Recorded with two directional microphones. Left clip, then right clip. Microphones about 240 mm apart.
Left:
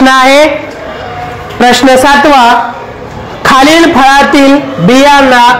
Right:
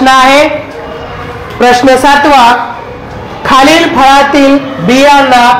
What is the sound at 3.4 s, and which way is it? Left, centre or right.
A man's voice, left.